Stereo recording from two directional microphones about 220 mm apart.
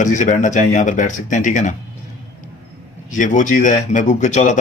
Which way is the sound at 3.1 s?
35° left (ahead or behind).